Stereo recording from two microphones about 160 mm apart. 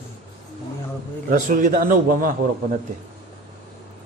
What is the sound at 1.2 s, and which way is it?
A man's voice, 60° right (ahead or behind).